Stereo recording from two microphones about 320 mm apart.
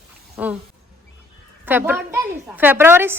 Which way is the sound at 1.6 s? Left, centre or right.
Centre.